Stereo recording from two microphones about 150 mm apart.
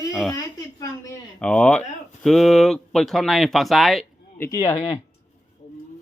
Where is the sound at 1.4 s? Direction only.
5° left (ahead or behind).